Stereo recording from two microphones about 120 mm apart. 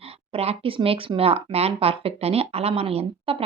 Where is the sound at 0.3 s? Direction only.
55° right (ahead or behind).